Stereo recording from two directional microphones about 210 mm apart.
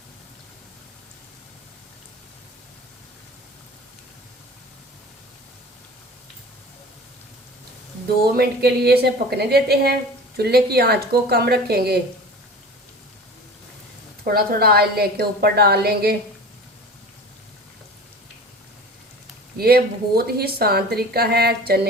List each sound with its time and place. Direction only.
8.4 s a woman's voice: 50° right (ahead or behind)
14.3 s a woman's voice: 45° right (ahead or behind)
19.5 s a woman's voice: 45° right (ahead or behind)